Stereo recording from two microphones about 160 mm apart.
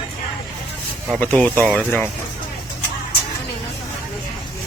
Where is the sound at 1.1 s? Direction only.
5° left (ahead or behind).